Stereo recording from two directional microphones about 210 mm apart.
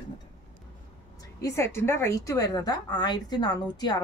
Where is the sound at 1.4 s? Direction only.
10° left (ahead or behind).